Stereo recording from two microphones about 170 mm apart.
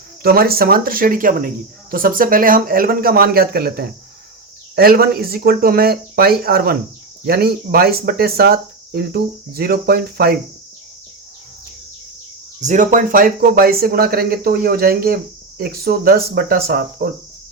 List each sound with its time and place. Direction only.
0.2 s speech: 60° right (ahead or behind)
12.6 s speech: 45° right (ahead or behind); by 17.1 s 65° right (ahead or behind)